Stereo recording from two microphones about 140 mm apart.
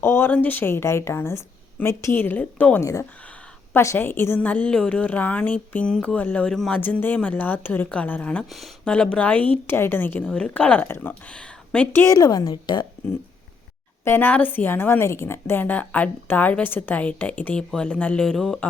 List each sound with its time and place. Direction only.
0.0 s a woman's voice: 15° left (ahead or behind)
12.0 s a woman's voice: 25° left (ahead or behind)
14.0 s a woman's voice: 15° left (ahead or behind)